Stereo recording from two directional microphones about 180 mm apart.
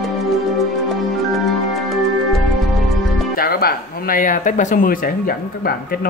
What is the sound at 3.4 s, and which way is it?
Speech, 55° left (ahead or behind).